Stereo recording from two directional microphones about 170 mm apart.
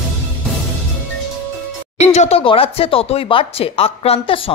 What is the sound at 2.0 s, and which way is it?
Speech, 40° left (ahead or behind).